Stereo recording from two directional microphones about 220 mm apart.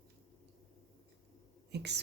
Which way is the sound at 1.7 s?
50° right (ahead or behind).